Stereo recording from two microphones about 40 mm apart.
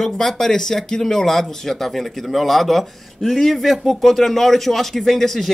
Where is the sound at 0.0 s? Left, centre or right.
Centre.